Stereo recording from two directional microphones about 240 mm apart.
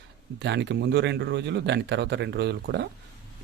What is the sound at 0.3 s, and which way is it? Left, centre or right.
Speech, right.